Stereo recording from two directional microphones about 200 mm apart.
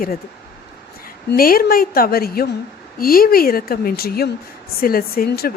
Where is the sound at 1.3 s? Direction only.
45° left (ahead or behind).